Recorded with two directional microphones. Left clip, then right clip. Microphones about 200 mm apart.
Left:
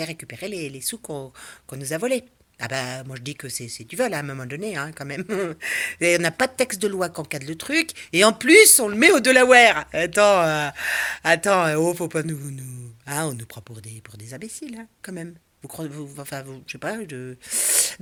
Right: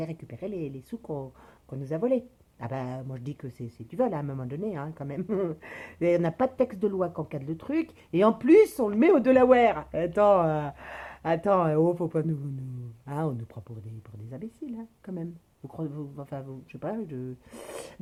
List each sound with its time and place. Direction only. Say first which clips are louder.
0.0 s speech: left 5 dB; 15° left (ahead or behind)
1.0 s speech: even; 35° left (ahead or behind)
1.7 s speech: left 3 dB; 20° left (ahead or behind)
8.7 s speech: left 6 dB; 25° left (ahead or behind)
9.0 s speech: left 5 dB; 10° left (ahead or behind)